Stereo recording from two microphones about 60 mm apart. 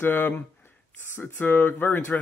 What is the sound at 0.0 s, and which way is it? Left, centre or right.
Speech, left.